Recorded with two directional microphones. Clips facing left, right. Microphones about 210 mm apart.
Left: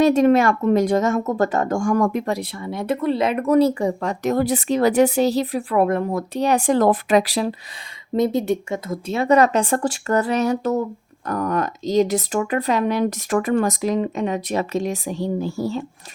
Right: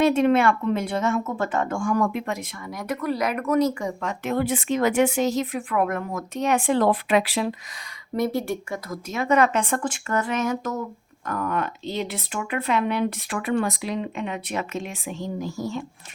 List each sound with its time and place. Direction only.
0.0 s speech: 40° left (ahead or behind)
8.1 s speech: 20° left (ahead or behind)